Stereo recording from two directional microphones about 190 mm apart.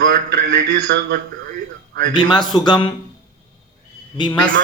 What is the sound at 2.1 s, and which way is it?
Speech, 25° left (ahead or behind).